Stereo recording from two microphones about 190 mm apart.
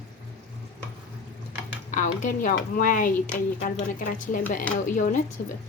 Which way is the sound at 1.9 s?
40° left (ahead or behind).